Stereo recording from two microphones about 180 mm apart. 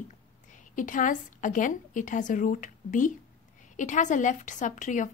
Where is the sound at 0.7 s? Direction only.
45° left (ahead or behind).